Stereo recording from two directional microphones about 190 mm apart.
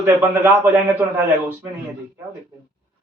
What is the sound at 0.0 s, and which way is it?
A man's voice, 10° right (ahead or behind).